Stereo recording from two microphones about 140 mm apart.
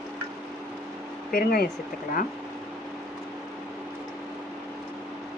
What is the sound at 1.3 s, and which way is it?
Speech, 90° left.